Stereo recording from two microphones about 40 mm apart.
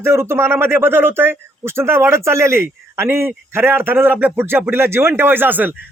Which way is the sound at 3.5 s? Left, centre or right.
Right.